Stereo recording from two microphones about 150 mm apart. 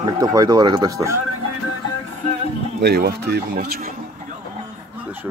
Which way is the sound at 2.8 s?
90° right.